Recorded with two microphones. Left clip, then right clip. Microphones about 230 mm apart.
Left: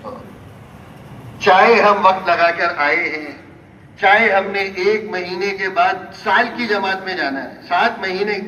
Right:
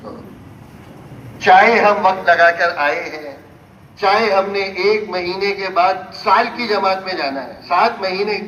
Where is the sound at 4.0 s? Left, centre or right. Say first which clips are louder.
Left 1 dB; right.